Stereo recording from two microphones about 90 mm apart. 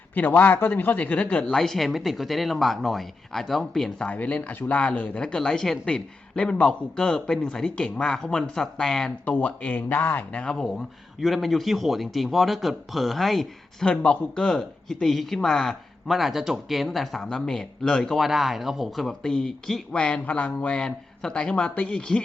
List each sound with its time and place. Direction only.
0.1 s speech: 20° left (ahead or behind); by 4.1 s 5° left (ahead or behind)
4.1 s speech: 15° left (ahead or behind)
9.2 s speech: 20° left (ahead or behind)
10.4 s speech: 10° left (ahead or behind)
13.8 s speech: 15° left (ahead or behind)